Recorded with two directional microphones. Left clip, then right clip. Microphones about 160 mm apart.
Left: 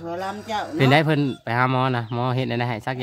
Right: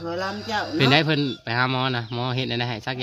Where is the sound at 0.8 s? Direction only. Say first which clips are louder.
Left 1 dB; 40° left (ahead or behind).